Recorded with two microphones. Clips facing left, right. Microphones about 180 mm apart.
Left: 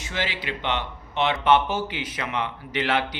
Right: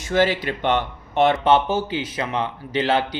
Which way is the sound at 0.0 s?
45° right (ahead or behind).